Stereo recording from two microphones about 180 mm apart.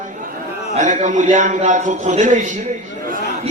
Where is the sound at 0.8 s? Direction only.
40° right (ahead or behind).